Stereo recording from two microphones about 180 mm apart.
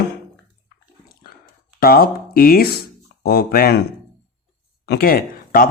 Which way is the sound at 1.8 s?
55° left (ahead or behind).